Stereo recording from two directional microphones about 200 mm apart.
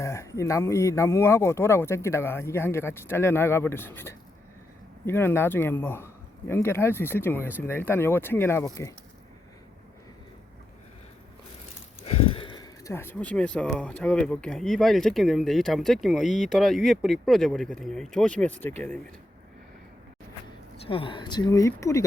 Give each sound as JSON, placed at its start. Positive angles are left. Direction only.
{"t": 0.0, "sound": "speech", "side_deg": 15}
{"t": 12.0, "sound": "speech", "side_deg": 25}
{"t": 20.7, "sound": "speech", "side_deg": 25}